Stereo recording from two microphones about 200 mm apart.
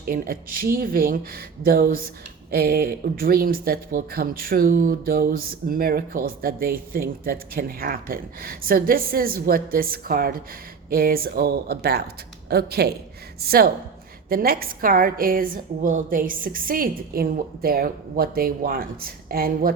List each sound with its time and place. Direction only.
0.0 s speech: 45° right (ahead or behind)